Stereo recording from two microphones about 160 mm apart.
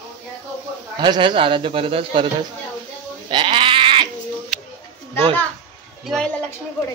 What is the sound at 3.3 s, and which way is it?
Sheep, 30° right (ahead or behind).